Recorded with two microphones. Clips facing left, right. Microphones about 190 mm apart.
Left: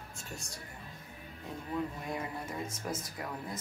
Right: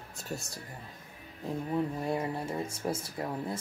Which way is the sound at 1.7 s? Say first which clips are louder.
Right 5 dB; 30° right (ahead or behind).